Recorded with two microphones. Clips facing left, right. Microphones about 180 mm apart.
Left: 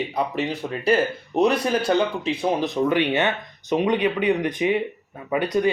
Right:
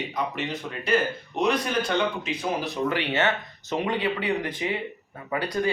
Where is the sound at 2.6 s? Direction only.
20° left (ahead or behind).